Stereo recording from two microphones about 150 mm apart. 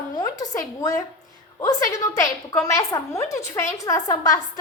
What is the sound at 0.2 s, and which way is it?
Speech, 25° left (ahead or behind).